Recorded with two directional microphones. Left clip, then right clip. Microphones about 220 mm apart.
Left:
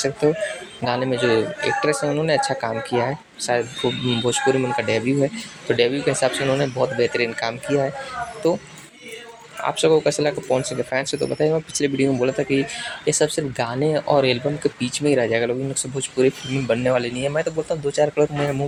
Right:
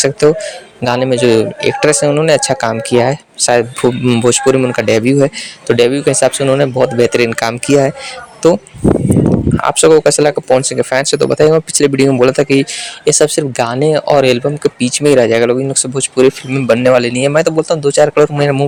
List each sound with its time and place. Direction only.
0.2 s speech: 50° right (ahead or behind)
9.6 s speech: 50° right (ahead or behind)